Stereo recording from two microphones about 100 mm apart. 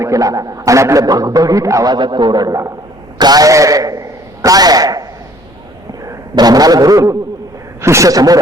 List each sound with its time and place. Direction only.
0.0 s a man's voice: 35° right (ahead or behind)
6.3 s speech: 40° right (ahead or behind)